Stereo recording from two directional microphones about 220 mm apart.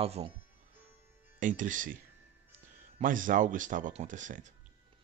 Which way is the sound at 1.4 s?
35° right (ahead or behind).